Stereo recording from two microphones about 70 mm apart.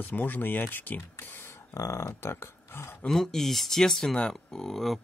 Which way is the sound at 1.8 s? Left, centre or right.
Left.